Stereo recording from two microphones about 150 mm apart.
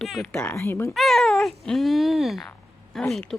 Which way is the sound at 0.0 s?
Centre (ahead or behind).